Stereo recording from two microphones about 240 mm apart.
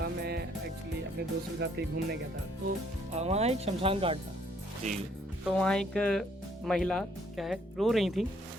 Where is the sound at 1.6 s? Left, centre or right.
Right.